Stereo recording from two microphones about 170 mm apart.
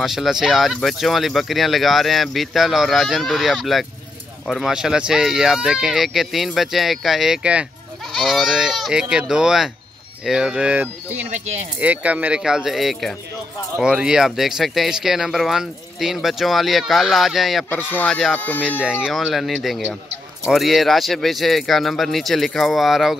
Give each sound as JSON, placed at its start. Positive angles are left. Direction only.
{"t": 0.0, "sound": "speech", "side_deg": 0}
{"t": 17.6, "sound": "speech", "side_deg": 10}
{"t": 18.6, "sound": "speech", "side_deg": -5}